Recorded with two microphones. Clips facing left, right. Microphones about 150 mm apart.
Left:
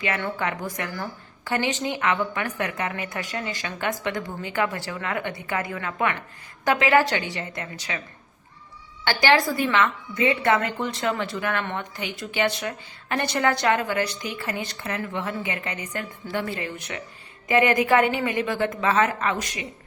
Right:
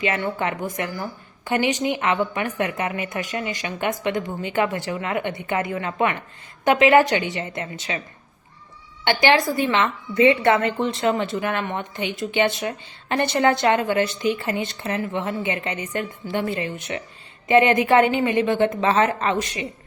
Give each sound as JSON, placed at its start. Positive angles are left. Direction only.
{"t": 0.0, "sound": "a woman's voice", "side_deg": -20}
{"t": 9.0, "sound": "a woman's voice", "side_deg": -20}